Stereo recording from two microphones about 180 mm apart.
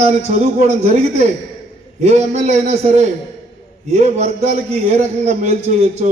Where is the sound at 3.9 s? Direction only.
40° right (ahead or behind).